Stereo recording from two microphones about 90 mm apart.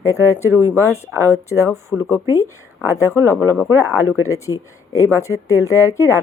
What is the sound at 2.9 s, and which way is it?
Speech, 30° right (ahead or behind).